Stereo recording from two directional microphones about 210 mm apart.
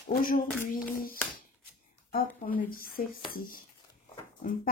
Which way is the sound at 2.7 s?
45° left (ahead or behind).